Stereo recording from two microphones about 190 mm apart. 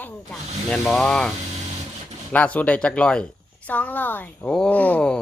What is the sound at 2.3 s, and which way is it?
A woman's voice, 10° left (ahead or behind).